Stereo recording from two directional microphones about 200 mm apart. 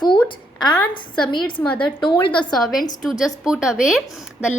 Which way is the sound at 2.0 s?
25° left (ahead or behind).